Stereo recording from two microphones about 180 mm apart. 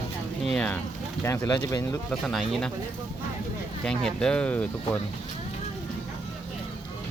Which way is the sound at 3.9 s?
5° left (ahead or behind).